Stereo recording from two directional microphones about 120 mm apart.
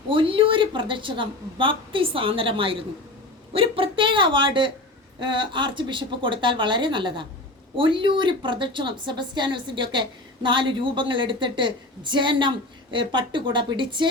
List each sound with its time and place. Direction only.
0.1 s a woman's voice: 45° right (ahead or behind)